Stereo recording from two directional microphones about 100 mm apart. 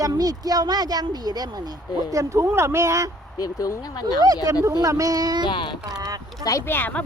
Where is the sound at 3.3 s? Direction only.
35° left (ahead or behind).